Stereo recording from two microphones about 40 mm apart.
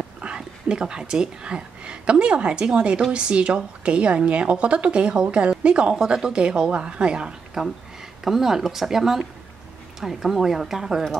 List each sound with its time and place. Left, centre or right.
0.4 s a woman's voice: centre
5.9 s a woman's voice: centre
7.6 s speech: centre